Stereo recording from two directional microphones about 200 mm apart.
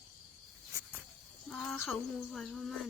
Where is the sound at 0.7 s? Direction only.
15° right (ahead or behind).